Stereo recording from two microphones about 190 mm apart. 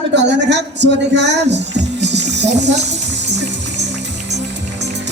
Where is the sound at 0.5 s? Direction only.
65° right (ahead or behind).